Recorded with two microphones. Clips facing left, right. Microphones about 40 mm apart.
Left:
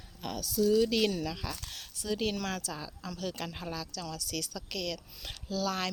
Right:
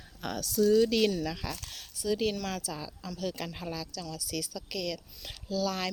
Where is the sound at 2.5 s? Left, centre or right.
Left.